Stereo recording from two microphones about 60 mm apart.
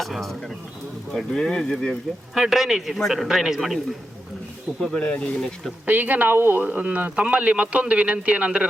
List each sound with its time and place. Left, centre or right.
0.0 s a man's voice: centre
2.3 s a man's voice: centre
4.8 s speech: centre
5.8 s speech: right